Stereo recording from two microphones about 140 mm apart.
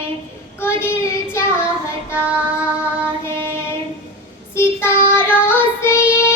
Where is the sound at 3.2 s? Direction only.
15° left (ahead or behind).